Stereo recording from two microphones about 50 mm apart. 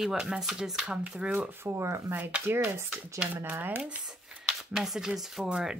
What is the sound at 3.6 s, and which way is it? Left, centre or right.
Speech, right.